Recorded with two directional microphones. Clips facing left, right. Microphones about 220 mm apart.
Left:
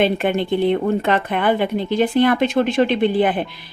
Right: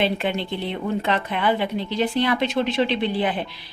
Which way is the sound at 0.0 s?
50° left (ahead or behind).